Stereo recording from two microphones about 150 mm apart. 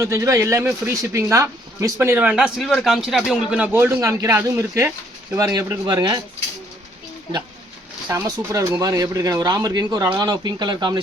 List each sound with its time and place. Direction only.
0.0 s a man's voice: 20° right (ahead or behind)
8.0 s speech: 20° right (ahead or behind)